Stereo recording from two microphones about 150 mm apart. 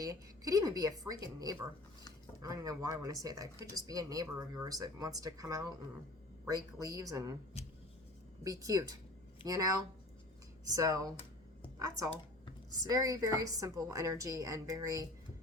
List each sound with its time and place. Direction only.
0.0 s speech: 25° right (ahead or behind)
7.6 s a sound: 45° left (ahead or behind)
8.4 s speech: 25° right (ahead or behind)